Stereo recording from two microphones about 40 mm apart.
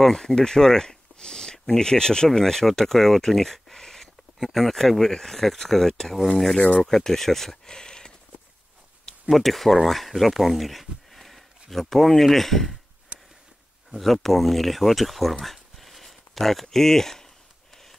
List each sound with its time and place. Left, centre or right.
0.0 s speech: centre
9.3 s speech: centre
13.1 s a sound: right
13.9 s speech: centre
15.4 s a sound: centre
16.7 s speech: centre